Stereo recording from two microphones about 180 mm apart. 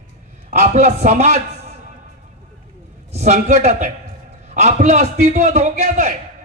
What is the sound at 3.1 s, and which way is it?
A man's voice, 40° right (ahead or behind).